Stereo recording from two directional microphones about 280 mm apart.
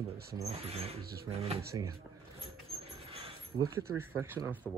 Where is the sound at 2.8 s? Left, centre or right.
Right.